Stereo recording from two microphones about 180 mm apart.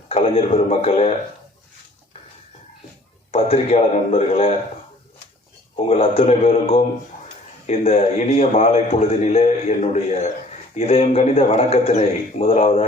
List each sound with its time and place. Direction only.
0.1 s a man's voice: 35° left (ahead or behind)
3.3 s a man's voice: 35° left (ahead or behind)
5.9 s a man's voice: 30° left (ahead or behind)